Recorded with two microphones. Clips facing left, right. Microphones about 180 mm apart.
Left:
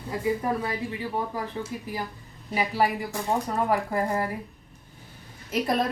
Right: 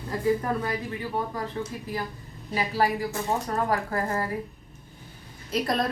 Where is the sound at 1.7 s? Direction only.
10° left (ahead or behind).